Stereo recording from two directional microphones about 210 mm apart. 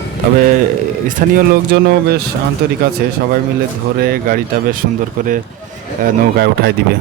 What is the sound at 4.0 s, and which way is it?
Speech, 45° right (ahead or behind).